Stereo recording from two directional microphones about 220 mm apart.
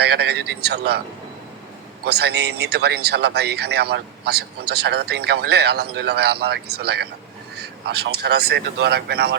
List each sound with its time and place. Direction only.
0.0 s speech: 50° right (ahead or behind)
2.0 s speech: 50° right (ahead or behind)